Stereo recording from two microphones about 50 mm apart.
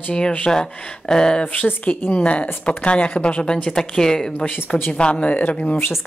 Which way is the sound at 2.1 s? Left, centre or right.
Left.